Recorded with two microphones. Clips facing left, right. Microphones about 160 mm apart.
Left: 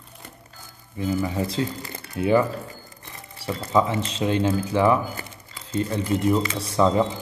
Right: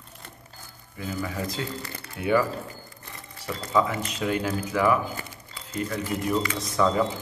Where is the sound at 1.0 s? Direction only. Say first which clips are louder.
Left 6 dB; 25° left (ahead or behind).